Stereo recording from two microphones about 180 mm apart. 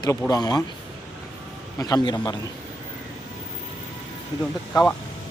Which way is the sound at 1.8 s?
20° left (ahead or behind).